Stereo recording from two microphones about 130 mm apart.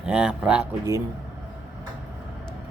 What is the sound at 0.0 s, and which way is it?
Speech, 5° right (ahead or behind).